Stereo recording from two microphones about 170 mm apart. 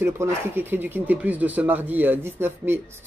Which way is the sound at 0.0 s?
15° right (ahead or behind).